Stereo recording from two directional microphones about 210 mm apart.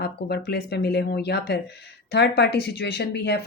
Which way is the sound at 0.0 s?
50° left (ahead or behind).